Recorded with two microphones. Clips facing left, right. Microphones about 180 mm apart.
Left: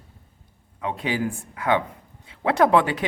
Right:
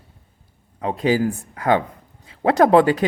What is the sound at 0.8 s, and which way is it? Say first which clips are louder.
A woman's voice: right 7 dB; 35° right (ahead or behind).